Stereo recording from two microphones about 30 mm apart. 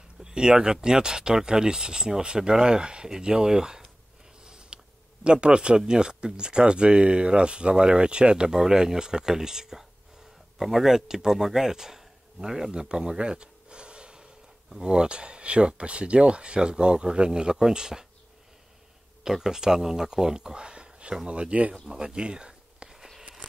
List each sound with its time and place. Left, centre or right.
0.2 s speech: right
4.4 s a sound: right
5.2 s speech: right
8.5 s speech: centre
13.2 s gasp: right
14.8 s speech: right
19.2 s speech: centre; by 21.2 s right
21.3 s speech: right
22.0 s speech: right
22.8 s a sound: centre